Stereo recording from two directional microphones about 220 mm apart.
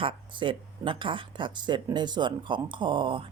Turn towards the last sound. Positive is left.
turn(degrees=-25)  # may be behind; listen again after turning